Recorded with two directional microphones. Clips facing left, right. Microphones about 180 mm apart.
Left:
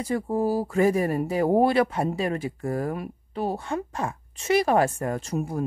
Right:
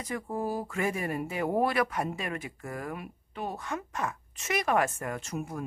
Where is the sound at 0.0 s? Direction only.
30° left (ahead or behind).